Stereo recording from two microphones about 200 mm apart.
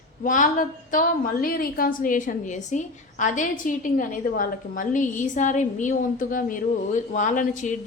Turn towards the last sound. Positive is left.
turn(degrees=40)  # may be behind; listen again after turning